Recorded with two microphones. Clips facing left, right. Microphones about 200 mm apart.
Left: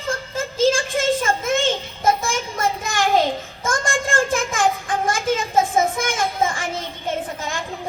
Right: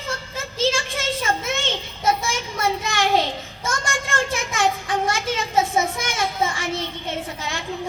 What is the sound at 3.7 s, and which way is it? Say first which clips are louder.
Child singing: left 4 dB; 50° left (ahead or behind).